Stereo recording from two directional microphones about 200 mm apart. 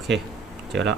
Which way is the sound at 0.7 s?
60° right (ahead or behind).